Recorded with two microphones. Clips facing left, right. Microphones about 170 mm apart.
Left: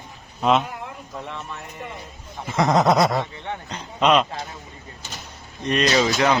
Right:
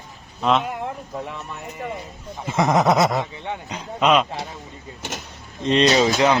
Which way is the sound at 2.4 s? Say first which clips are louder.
Even; 20° right (ahead or behind).